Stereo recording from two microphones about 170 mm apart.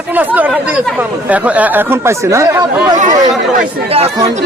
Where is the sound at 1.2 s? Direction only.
10° right (ahead or behind).